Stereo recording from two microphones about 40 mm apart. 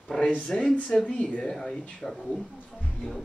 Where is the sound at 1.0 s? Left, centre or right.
Centre.